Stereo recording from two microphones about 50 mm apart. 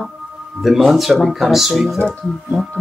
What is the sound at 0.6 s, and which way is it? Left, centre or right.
Speech, centre.